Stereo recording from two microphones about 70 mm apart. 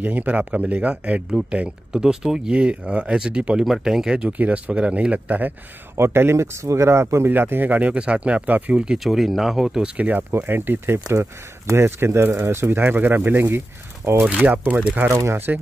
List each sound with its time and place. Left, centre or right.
0.0 s speech: right
1.9 s speech: centre
5.9 s speech: right
7.2 s speech: right; by 9.0 s centre
9.0 s speech: centre
9.9 s speech: right
14.0 s speech: right
14.4 s speech: right
15.0 s speech: right